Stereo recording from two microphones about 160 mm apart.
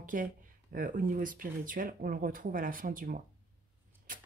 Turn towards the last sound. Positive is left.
turn(degrees=-55)  # may be behind; listen again after turning